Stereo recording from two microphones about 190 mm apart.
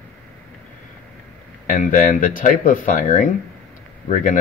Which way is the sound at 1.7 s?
45° left (ahead or behind).